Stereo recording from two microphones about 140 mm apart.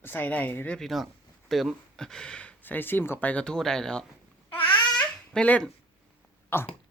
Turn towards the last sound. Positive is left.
turn(degrees=15)  # may be behind; listen again after turning